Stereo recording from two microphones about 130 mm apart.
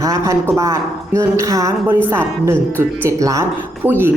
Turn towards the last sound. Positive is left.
turn(degrees=-15)  # may be behind; listen again after turning